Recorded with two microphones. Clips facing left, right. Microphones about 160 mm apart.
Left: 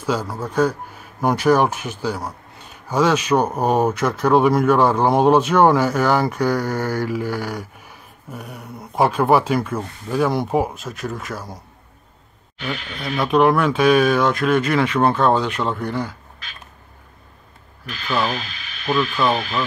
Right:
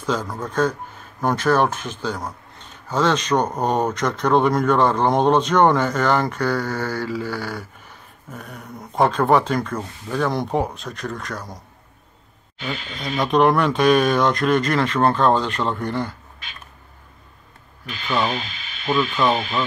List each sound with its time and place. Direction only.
0.0 s speech: 10° left (ahead or behind)
13.2 s speech: 5° left (ahead or behind)
18.1 s speech: 20° right (ahead or behind)
18.9 s speech: centre (ahead or behind)